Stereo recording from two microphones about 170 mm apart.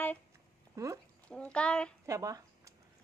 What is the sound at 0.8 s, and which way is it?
Speech, 20° right (ahead or behind).